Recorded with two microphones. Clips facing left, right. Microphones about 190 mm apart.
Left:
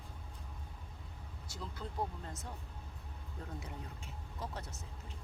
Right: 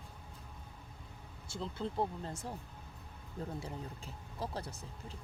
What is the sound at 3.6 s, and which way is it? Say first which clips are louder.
Speech: right 4 dB; 35° right (ahead or behind).